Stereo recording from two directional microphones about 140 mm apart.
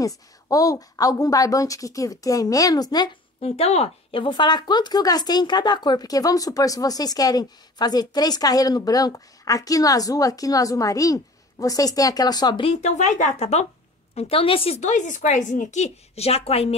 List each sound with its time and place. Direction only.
0.0 s speech: 25° left (ahead or behind)
3.4 s speech: 50° left (ahead or behind); by 12.6 s 30° left (ahead or behind)
12.6 s speech: 55° left (ahead or behind)
14.8 s a woman's voice: 60° left (ahead or behind)